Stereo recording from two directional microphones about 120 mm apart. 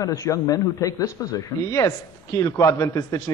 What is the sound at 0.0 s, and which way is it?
Speech, 30° left (ahead or behind).